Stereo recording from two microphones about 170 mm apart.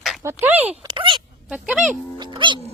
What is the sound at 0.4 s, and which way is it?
Speech, 10° right (ahead or behind).